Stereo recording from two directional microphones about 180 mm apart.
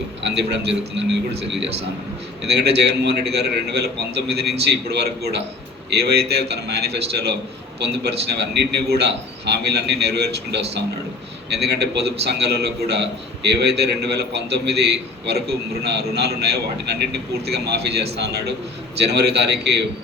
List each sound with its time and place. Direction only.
0.2 s a man's voice: 75° right (ahead or behind)